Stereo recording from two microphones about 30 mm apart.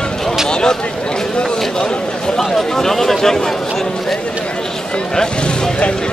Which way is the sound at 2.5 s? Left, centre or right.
Centre.